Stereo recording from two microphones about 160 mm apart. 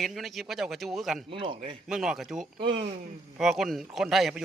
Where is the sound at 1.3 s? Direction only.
35° right (ahead or behind).